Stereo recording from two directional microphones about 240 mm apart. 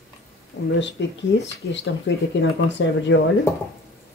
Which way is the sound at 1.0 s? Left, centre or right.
Left.